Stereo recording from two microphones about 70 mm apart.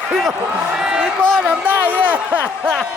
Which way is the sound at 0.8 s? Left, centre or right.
Centre.